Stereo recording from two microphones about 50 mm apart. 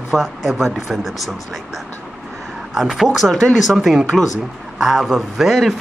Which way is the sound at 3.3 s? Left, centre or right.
Centre.